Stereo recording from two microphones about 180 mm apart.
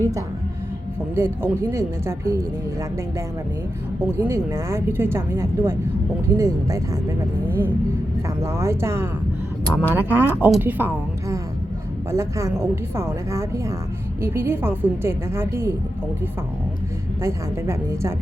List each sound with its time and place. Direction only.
1.1 s speech: 15° right (ahead or behind)
4.0 s speech: 15° right (ahead or behind)
9.6 s speech: 10° left (ahead or behind)
9.9 s speech: 10° right (ahead or behind)
17.2 s speech: 15° right (ahead or behind)